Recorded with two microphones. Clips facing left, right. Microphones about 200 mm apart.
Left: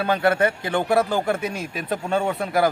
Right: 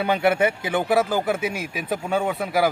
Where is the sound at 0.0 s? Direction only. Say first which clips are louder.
Even; 10° right (ahead or behind).